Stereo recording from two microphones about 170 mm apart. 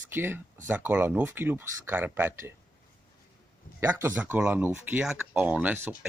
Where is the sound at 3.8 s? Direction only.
10° right (ahead or behind).